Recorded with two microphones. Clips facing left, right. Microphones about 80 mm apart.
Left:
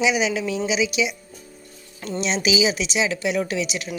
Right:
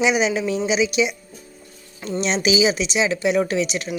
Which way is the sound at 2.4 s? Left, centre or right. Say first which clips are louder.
Right 3 dB; right.